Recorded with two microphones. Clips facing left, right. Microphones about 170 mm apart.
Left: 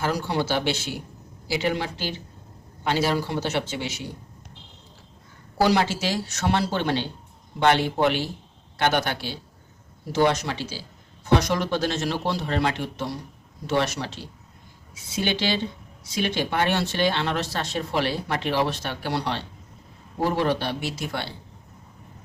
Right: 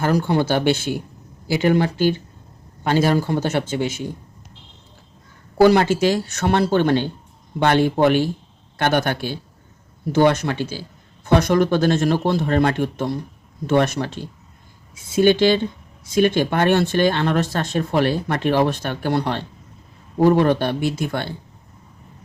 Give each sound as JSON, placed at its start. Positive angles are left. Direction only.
{"t": 0.0, "sound": "speech", "side_deg": -50}
{"t": 5.5, "sound": "speech", "side_deg": -55}